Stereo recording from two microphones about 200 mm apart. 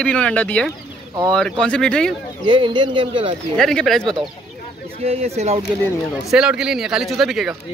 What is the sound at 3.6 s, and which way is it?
Speech, centre (ahead or behind).